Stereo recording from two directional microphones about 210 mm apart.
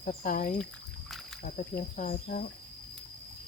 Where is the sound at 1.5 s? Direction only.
40° left (ahead or behind).